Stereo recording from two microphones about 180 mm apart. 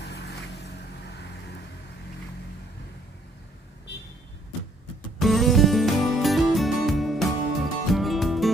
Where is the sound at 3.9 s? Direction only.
70° left (ahead or behind).